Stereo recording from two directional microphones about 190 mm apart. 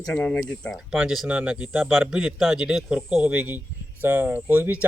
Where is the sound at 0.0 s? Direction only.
5° left (ahead or behind).